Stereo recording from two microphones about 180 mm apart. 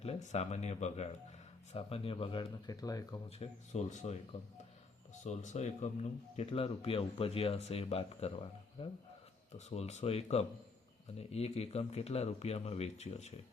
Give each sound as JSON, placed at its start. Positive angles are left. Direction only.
{"t": 0.0, "sound": "speech", "side_deg": 35}
{"t": 3.2, "sound": "speech", "side_deg": 35}
{"t": 5.2, "sound": "speech", "side_deg": 40}